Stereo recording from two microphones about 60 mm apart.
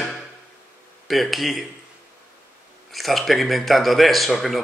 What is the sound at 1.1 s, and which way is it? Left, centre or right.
Speech, centre.